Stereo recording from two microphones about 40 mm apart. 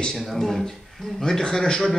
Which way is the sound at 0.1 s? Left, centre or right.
Centre.